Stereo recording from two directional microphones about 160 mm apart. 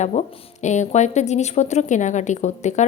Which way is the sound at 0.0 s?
45° left (ahead or behind).